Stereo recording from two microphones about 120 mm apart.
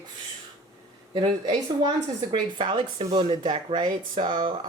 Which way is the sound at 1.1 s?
40° right (ahead or behind).